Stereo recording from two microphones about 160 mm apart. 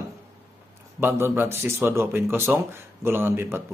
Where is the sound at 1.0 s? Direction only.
15° right (ahead or behind).